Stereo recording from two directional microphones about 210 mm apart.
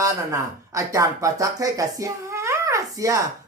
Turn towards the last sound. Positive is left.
turn(degrees=-15)  # may be behind; listen again after turning